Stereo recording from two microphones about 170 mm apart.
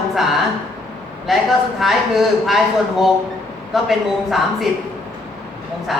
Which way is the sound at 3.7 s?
Centre (ahead or behind).